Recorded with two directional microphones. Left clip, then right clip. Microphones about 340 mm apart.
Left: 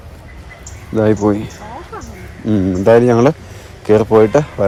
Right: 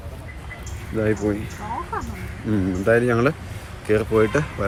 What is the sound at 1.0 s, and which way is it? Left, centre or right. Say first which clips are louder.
Speech: left 9 dB; left.